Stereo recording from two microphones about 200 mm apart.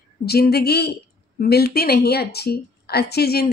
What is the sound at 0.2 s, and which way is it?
A woman's voice, 50° left (ahead or behind).